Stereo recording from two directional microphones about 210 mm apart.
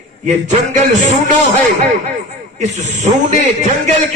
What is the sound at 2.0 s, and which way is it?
A man's voice, 35° right (ahead or behind).